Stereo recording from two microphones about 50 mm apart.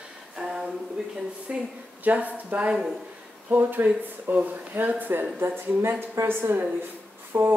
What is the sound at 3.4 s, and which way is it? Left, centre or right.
Speech, right.